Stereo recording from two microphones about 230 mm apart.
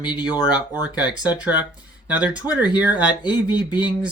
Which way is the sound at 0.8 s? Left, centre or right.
Centre.